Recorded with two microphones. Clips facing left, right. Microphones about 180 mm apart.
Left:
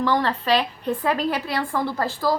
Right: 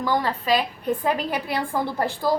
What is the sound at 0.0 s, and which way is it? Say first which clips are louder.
A woman's voice: left 2 dB; 10° right (ahead or behind).